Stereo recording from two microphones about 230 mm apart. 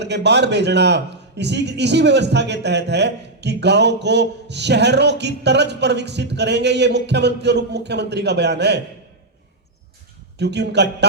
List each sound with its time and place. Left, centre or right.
0.0 s a man's voice: right
10.3 s a man's voice: right